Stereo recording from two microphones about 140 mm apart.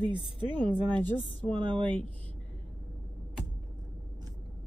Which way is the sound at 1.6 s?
35° right (ahead or behind).